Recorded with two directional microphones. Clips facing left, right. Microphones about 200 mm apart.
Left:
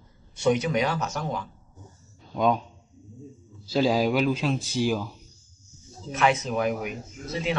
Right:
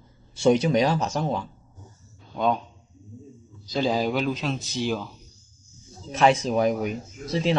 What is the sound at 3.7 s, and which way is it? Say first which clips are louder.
Speech: left 2 dB; 5° left (ahead or behind).